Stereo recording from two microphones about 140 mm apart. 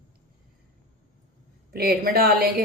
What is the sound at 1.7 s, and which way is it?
Speech, 90° right.